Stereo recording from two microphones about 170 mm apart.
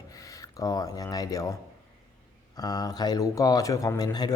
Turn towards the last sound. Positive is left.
turn(degrees=25)  # may be behind; listen again after turning